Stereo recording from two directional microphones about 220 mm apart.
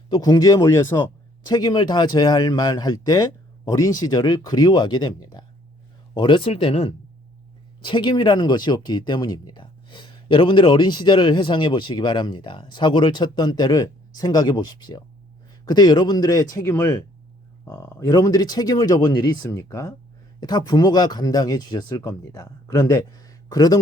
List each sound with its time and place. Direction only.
0.1 s speech: 15° left (ahead or behind)